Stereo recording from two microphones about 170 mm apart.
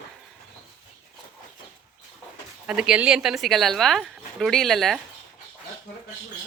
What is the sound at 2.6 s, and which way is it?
Speech, 5° right (ahead or behind).